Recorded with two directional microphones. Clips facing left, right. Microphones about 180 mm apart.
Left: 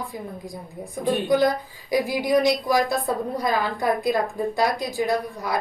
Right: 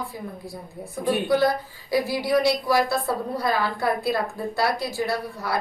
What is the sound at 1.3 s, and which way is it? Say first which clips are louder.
A woman's voice: left 2 dB; 15° left (ahead or behind).